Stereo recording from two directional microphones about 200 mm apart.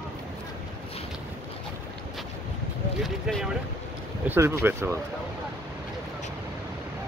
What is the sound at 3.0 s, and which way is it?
Speech, centre (ahead or behind).